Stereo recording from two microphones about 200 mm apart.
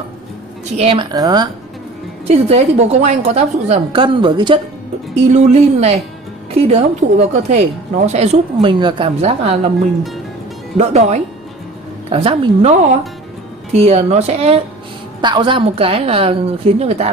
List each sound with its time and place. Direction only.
0.7 s a woman's voice: 25° right (ahead or behind)
2.2 s a woman's voice: 30° right (ahead or behind)
5.3 s a woman's voice: 35° right (ahead or behind)
10.8 s a woman's voice: 35° right (ahead or behind)